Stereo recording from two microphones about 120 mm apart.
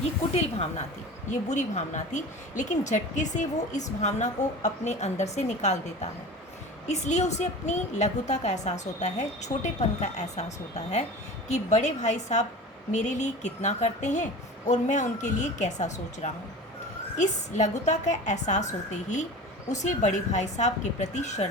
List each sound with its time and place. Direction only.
0.3 s a woman's voice: 60° left (ahead or behind)
1.3 s a woman's voice: 75° left (ahead or behind)
6.8 s a woman's voice: 75° left (ahead or behind)